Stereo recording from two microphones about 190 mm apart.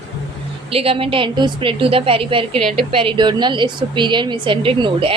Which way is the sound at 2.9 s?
25° right (ahead or behind).